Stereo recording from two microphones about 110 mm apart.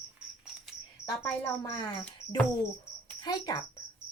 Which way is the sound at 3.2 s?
40° left (ahead or behind).